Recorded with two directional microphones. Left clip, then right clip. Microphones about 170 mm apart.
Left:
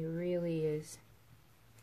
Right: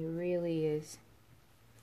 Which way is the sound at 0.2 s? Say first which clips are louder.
Right 2 dB; 25° right (ahead or behind).